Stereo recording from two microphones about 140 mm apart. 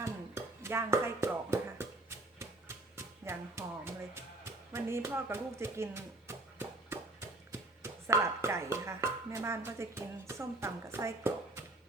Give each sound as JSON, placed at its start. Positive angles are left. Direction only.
{"t": 0.0, "sound": "a sound", "side_deg": -20}
{"t": 3.2, "sound": "music", "side_deg": -20}
{"t": 4.7, "sound": "speech", "side_deg": -20}